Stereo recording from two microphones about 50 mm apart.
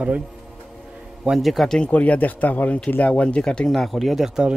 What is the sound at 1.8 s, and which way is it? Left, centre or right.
Speech, left.